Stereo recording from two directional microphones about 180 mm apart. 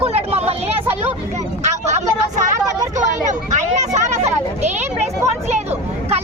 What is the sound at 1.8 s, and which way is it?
Speech, 40° right (ahead or behind).